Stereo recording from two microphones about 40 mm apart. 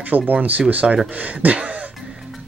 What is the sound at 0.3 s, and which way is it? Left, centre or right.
Speech, right.